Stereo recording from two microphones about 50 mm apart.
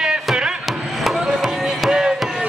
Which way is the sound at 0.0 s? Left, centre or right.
Centre.